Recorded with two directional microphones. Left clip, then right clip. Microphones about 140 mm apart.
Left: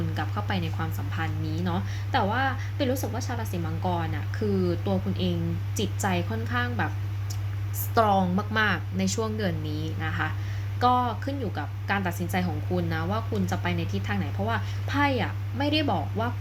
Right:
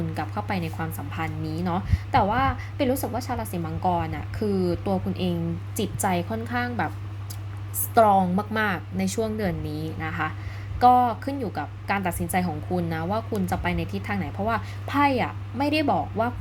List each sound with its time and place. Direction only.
0.1 s a woman's voice: 20° right (ahead or behind)
7.9 s a woman's voice: 20° right (ahead or behind)